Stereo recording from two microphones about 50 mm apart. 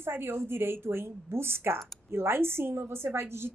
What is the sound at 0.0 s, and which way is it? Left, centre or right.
A woman's voice, right.